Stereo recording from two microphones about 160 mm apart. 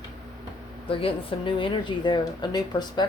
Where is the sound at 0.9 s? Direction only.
35° left (ahead or behind).